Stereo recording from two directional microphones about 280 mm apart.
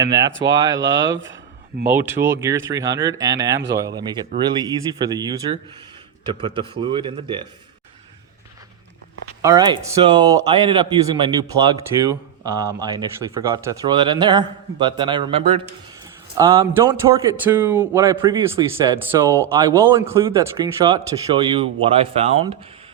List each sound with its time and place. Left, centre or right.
0.0 s speech: centre
9.4 s speech: centre